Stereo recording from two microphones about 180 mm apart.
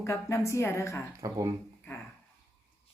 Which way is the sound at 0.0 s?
15° left (ahead or behind).